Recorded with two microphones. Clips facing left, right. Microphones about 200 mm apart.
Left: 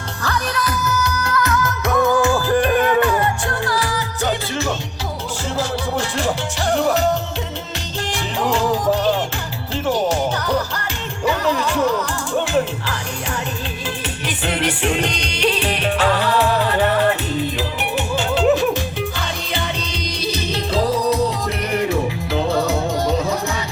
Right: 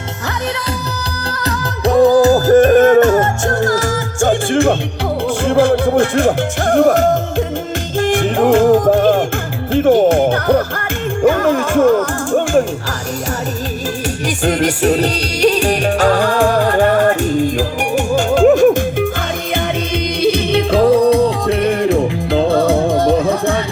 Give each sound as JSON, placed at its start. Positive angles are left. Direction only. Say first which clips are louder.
{"t": 1.3, "sound": "music", "louder": "right 1 dB", "side_deg": -35}
{"t": 14.4, "sound": "music", "louder": "right 7 dB", "side_deg": -45}
{"t": 20.2, "sound": "music", "louder": "right 10 dB", "side_deg": -55}